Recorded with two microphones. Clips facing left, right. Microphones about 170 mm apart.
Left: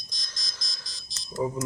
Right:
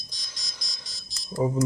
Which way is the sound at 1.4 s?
25° right (ahead or behind).